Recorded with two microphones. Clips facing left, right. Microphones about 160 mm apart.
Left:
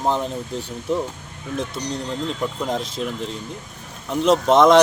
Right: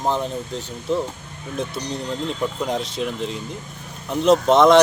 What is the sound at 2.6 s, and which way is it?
Speech, centre (ahead or behind).